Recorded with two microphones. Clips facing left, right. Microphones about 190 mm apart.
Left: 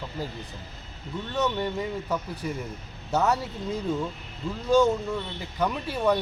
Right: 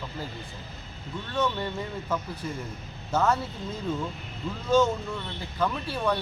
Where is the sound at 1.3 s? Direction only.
15° left (ahead or behind).